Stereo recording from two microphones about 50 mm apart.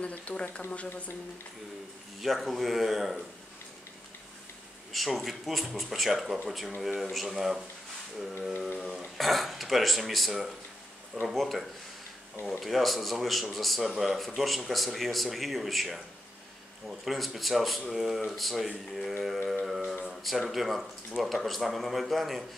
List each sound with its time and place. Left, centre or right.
0.0 s speech: left
2.2 s speech: centre
4.9 s speech: centre
8.9 s speech: centre
17.0 s speech: centre
19.6 s a sound: centre
20.2 s speech: centre